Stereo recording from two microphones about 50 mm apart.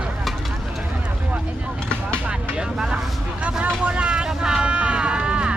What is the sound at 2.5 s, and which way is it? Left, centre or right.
Vehicle, centre.